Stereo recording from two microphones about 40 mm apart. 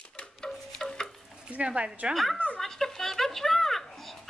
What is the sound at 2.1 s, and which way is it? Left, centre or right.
Speech, centre.